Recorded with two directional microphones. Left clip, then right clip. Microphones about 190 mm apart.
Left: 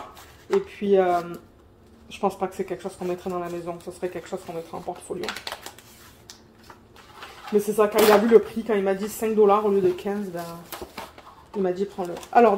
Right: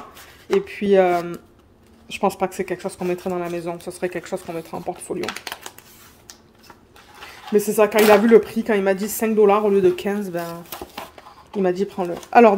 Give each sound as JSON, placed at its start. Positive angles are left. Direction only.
{"t": 0.6, "sound": "speech", "side_deg": -70}
{"t": 7.5, "sound": "speech", "side_deg": -70}
{"t": 11.6, "sound": "speech", "side_deg": -75}